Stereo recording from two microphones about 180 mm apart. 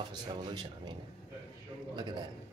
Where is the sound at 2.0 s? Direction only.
25° right (ahead or behind).